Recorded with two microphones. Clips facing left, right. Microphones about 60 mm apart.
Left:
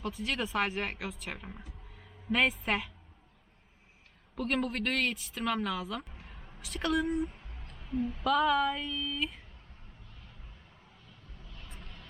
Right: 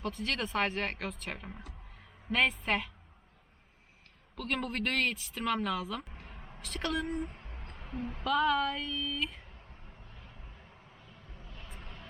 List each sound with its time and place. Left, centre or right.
0.0 s a woman's voice: centre
4.4 s a woman's voice: centre
7.5 s music: right
8.2 s a woman's voice: centre
11.4 s vehicle: right